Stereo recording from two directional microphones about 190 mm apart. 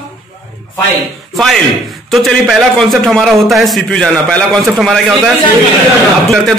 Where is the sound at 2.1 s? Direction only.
Centre (ahead or behind).